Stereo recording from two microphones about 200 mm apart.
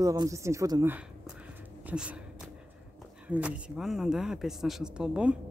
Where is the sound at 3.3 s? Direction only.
5° right (ahead or behind).